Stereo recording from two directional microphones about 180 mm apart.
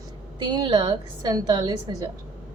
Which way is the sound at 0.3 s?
25° right (ahead or behind).